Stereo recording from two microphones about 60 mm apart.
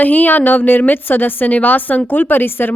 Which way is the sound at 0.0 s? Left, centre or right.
Left.